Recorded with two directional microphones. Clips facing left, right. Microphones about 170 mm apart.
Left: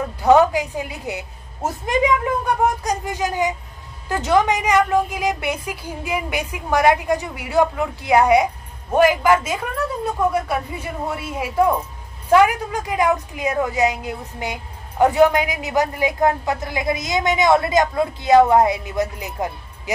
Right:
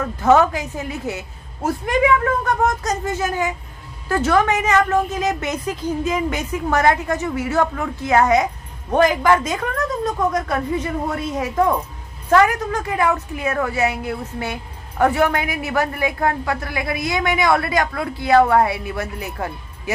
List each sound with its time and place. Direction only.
0.0 s a woman's voice: 15° left (ahead or behind)